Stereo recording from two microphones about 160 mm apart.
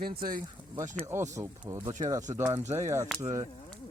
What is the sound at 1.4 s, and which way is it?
Speech, 20° right (ahead or behind).